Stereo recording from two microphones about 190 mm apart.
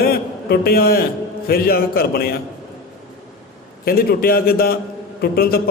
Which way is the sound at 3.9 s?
50° left (ahead or behind).